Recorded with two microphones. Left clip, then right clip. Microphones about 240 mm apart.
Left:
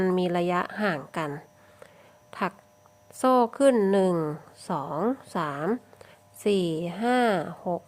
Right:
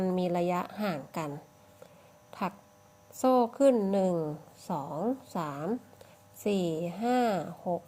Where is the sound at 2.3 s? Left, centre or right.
Centre.